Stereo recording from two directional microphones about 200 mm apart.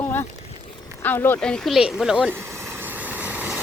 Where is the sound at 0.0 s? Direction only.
10° left (ahead or behind).